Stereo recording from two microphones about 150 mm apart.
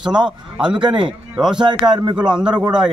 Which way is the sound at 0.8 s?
30° right (ahead or behind).